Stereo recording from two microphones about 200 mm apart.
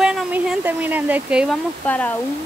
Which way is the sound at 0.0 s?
5° right (ahead or behind).